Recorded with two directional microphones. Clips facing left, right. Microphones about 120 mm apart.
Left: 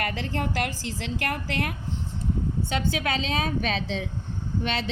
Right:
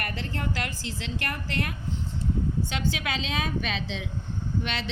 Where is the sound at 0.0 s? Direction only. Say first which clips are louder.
Left 4 dB; 85° left; by 1.7 s 70° left (ahead or behind).